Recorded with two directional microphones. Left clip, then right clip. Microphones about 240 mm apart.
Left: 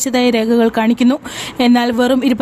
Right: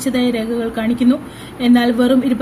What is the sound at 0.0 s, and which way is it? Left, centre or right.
A woman's voice, left.